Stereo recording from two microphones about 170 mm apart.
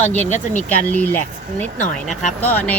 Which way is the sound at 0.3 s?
45° left (ahead or behind).